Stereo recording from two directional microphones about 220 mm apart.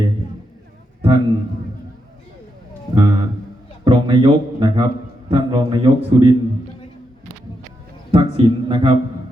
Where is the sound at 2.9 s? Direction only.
20° right (ahead or behind).